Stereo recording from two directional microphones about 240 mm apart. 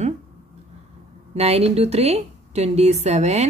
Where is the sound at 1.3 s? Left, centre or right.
Right.